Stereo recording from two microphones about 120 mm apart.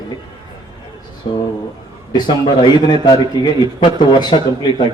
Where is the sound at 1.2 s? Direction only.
50° left (ahead or behind).